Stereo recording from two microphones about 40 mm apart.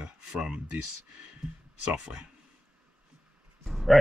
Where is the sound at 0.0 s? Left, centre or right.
Right.